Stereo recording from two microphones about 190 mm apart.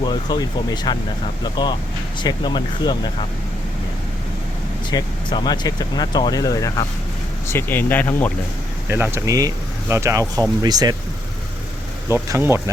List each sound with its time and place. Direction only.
0.0 s speech: 20° left (ahead or behind)
2.2 s speech: 25° left (ahead or behind)
4.9 s speech: 25° left (ahead or behind)
8.9 s speech: 10° right (ahead or behind)
12.0 s speech: 15° right (ahead or behind)